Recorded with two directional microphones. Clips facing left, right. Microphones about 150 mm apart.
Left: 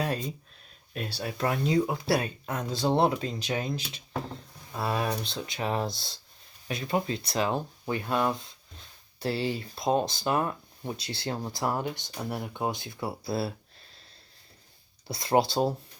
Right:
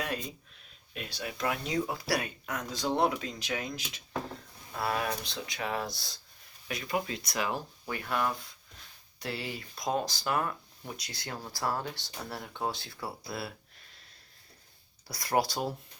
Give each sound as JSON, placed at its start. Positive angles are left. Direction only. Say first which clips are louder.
{"t": 0.9, "sound": "speech", "louder": "left 5 dB", "side_deg": 40}
{"t": 15.0, "sound": "speech", "louder": "left 5 dB", "side_deg": 25}